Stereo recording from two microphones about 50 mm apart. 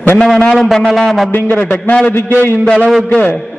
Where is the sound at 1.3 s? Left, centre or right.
Left.